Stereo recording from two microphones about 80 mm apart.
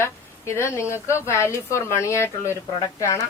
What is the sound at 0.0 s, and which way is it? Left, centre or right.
Speech, left.